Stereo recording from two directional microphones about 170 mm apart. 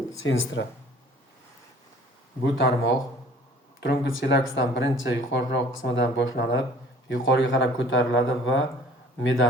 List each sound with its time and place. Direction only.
0.3 s speech: 90° left
2.4 s speech: 90° left